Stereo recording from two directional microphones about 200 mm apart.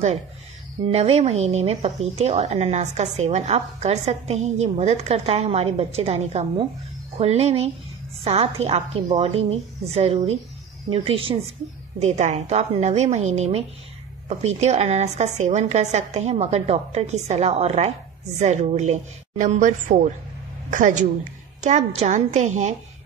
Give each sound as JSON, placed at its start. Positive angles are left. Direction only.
{"t": 0.9, "sound": "a woman's voice", "side_deg": -30}